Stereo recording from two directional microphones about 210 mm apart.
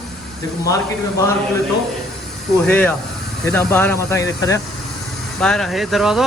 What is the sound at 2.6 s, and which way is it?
Speech, 5° left (ahead or behind).